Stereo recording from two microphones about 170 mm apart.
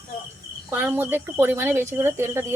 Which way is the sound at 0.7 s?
15° right (ahead or behind).